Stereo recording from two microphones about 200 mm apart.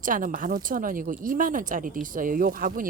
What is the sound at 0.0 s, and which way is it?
Speech, 40° right (ahead or behind).